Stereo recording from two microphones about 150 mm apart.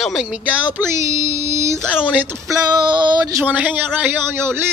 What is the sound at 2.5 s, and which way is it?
Female singing, 30° right (ahead or behind).